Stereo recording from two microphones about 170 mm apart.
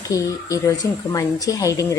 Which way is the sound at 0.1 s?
20° left (ahead or behind).